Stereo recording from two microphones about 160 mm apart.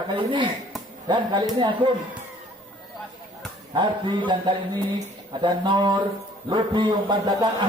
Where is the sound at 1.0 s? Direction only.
25° right (ahead or behind).